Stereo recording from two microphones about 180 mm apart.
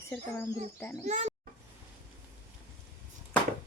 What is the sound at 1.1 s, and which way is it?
Speech, 40° right (ahead or behind).